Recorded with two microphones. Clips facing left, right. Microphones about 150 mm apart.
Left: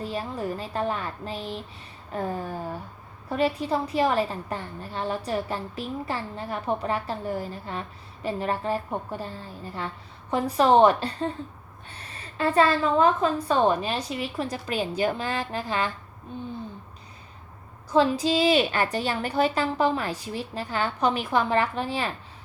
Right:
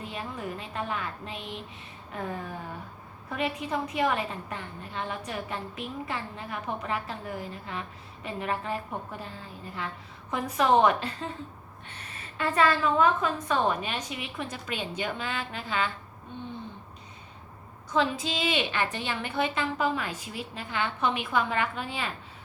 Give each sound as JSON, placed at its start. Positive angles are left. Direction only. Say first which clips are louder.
{"t": 0.0, "sound": "a woman's voice", "louder": "left 6 dB", "side_deg": 35}
{"t": 17.9, "sound": "a woman's voice", "louder": "left 6 dB", "side_deg": 35}